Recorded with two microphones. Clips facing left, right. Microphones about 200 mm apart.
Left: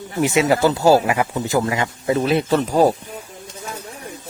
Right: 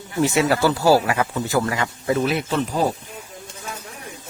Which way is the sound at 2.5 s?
40° left (ahead or behind).